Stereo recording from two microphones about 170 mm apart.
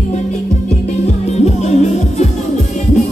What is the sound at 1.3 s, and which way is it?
Music, 40° left (ahead or behind).